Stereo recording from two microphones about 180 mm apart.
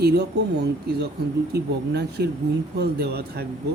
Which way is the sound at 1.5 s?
65° right (ahead or behind).